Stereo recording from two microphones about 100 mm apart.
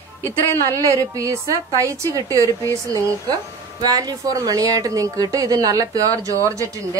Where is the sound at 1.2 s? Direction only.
30° right (ahead or behind).